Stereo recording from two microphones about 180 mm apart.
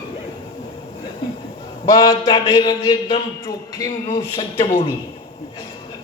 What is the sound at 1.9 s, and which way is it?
A man's voice, 20° left (ahead or behind).